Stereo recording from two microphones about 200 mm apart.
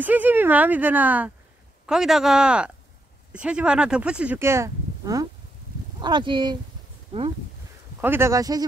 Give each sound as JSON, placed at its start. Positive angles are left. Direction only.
{"t": 0.0, "sound": "speech", "side_deg": -10}
{"t": 8.0, "sound": "speech", "side_deg": -10}